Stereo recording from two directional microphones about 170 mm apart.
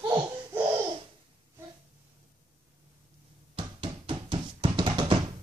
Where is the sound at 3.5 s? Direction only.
30° right (ahead or behind).